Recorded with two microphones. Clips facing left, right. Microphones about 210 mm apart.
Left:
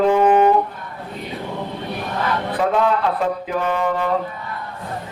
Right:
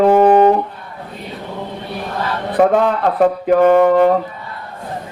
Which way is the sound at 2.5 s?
50° right (ahead or behind).